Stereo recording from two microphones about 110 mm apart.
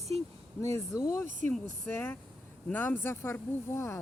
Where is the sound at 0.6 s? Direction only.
25° left (ahead or behind).